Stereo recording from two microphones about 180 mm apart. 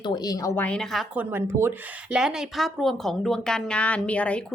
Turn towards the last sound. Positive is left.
turn(degrees=5)  # may be behind; listen again after turning